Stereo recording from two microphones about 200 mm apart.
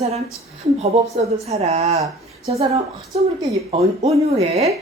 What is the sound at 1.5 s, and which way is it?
Speech, 30° right (ahead or behind).